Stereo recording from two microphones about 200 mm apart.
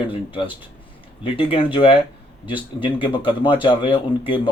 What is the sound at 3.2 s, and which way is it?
Speech, 25° left (ahead or behind).